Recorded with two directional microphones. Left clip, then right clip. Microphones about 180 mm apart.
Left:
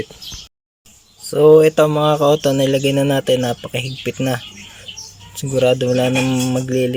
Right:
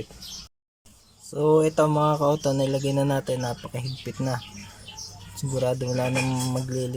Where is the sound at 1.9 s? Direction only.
20° left (ahead or behind).